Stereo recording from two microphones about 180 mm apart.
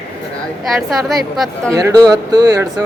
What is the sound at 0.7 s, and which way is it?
Speech, centre (ahead or behind).